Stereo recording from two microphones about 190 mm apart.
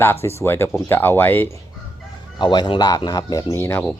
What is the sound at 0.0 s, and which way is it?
Speech, 10° left (ahead or behind).